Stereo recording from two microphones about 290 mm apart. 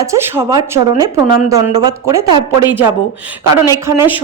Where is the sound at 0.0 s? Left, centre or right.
Centre.